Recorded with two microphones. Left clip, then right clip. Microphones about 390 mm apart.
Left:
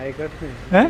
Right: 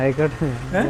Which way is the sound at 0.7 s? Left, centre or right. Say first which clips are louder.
Left 7 dB; left.